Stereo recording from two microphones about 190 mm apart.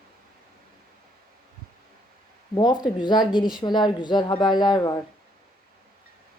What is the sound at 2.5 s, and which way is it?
Speech, 20° left (ahead or behind).